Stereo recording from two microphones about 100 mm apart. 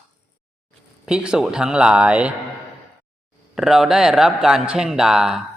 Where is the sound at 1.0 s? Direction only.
10° right (ahead or behind).